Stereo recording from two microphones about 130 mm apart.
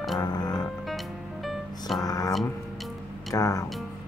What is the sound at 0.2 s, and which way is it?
Music, 30° left (ahead or behind).